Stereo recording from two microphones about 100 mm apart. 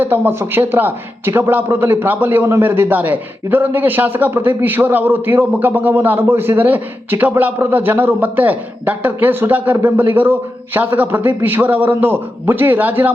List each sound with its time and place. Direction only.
0.0 s a man's voice: 25° right (ahead or behind)